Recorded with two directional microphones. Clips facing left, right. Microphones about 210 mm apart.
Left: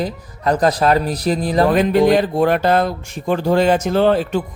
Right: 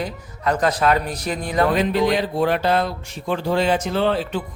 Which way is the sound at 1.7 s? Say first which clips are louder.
Left 6 dB; 50° left (ahead or behind).